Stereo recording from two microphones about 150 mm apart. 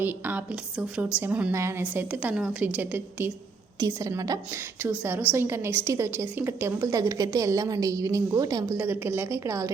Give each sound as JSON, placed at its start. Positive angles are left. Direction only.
{"t": 0.0, "sound": "a woman's voice", "side_deg": -10}
{"t": 3.8, "sound": "a woman's voice", "side_deg": -20}
{"t": 8.8, "sound": "a woman's voice", "side_deg": -15}